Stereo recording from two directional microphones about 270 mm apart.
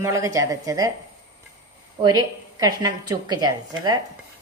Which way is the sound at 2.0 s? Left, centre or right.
Centre.